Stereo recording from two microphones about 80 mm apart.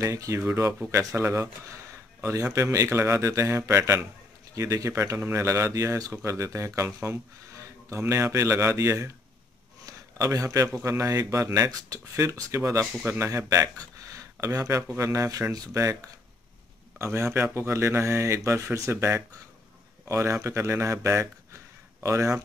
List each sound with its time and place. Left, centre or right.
0.0 s a man's voice: right
2.5 s a man's voice: right
13.7 s a sound: right
15.0 s a man's voice: right
17.0 s a man's voice: right